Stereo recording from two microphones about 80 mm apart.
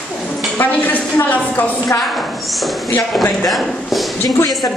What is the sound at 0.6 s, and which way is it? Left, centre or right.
A woman's voice, left.